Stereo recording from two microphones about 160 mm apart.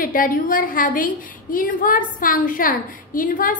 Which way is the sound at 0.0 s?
60° left (ahead or behind).